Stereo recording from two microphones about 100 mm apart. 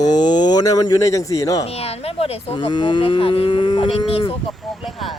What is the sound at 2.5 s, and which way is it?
Speech, 50° left (ahead or behind).